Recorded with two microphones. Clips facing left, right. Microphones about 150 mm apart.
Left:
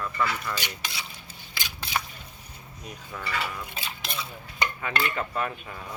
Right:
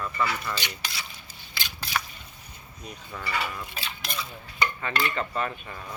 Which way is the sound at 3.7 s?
25° left (ahead or behind).